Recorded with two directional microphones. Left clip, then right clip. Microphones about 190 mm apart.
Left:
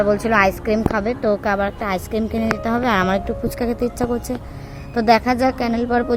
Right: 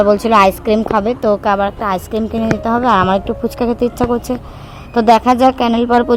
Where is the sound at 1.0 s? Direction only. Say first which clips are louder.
Right 5 dB; 20° right (ahead or behind).